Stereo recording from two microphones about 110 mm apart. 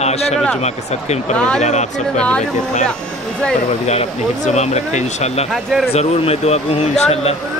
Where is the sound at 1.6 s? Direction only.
90° left.